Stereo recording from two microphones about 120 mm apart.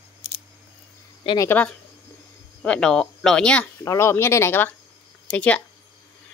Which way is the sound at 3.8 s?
25° left (ahead or behind).